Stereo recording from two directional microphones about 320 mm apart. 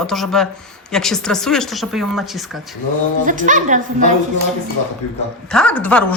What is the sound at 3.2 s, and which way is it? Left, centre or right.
Speech, right.